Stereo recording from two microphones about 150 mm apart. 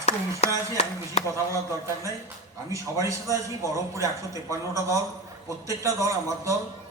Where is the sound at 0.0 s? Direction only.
45° left (ahead or behind).